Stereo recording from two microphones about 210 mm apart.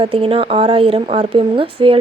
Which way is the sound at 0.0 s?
25° right (ahead or behind).